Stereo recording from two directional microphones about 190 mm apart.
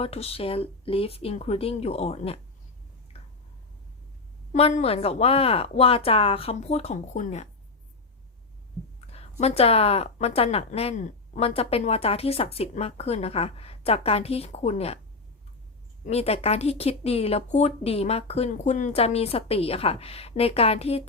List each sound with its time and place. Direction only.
0.0 s speech: 30° left (ahead or behind)
4.5 s speech: 35° left (ahead or behind)
9.4 s speech: 30° left (ahead or behind)
16.0 s speech: 35° left (ahead or behind)